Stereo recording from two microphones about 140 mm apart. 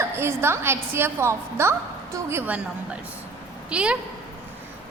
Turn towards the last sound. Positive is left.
turn(degrees=-10)  # may be behind; listen again after turning